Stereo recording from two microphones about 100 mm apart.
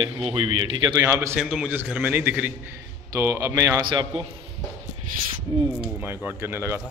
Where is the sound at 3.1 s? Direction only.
30° right (ahead or behind).